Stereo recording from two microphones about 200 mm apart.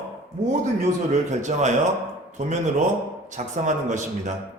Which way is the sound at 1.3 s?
35° right (ahead or behind).